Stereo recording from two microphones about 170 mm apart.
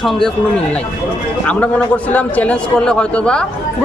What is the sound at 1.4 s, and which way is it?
A man's voice, 10° left (ahead or behind).